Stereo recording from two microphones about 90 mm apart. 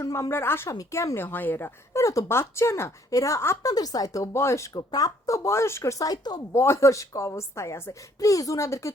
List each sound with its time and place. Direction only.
0.0 s speech: 35° left (ahead or behind)
0.7 s speech: 35° left (ahead or behind)
4.8 s speech: 45° left (ahead or behind)
6.5 s speech: 30° left (ahead or behind)